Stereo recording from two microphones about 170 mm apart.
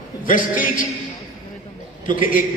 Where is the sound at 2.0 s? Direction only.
50° left (ahead or behind).